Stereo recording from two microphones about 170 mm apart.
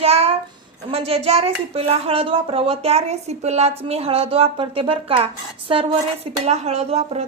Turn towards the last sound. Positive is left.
turn(degrees=-40)  # may be behind; listen again after turning